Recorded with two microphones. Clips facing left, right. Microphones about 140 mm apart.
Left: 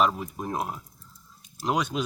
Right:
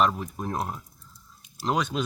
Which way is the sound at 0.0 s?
5° left (ahead or behind).